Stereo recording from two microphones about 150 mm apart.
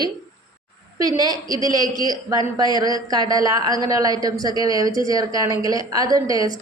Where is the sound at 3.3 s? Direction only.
25° right (ahead or behind).